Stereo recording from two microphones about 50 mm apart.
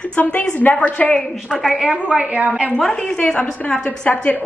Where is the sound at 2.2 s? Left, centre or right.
Right.